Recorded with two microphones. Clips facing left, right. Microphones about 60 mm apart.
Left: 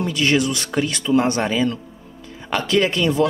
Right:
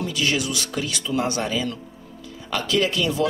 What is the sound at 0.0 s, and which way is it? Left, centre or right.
Speech, left.